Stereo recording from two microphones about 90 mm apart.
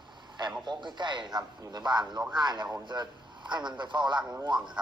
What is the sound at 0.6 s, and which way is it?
A man's voice, 60° right (ahead or behind).